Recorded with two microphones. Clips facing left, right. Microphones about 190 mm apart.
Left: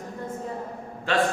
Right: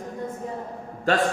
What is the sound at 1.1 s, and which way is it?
Speech, 40° right (ahead or behind).